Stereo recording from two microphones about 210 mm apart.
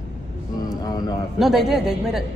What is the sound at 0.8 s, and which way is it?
Speech, 20° left (ahead or behind).